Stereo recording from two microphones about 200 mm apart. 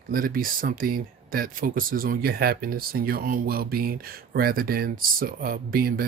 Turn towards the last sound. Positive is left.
turn(degrees=-45)  # may be behind; listen again after turning